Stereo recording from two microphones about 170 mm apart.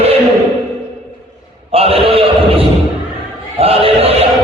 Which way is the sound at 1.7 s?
35° right (ahead or behind).